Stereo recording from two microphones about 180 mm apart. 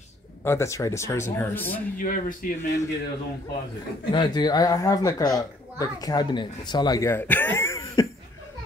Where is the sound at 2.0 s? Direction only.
50° left (ahead or behind).